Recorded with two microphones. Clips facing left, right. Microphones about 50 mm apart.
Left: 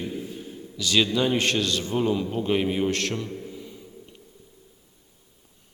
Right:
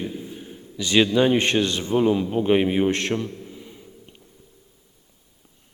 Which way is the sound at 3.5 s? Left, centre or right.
Centre.